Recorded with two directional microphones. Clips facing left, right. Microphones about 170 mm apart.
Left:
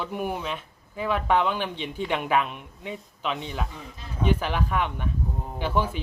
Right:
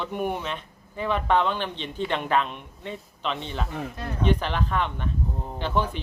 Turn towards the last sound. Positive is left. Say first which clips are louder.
# even
turn(degrees=10)  # may be behind; listen again after turning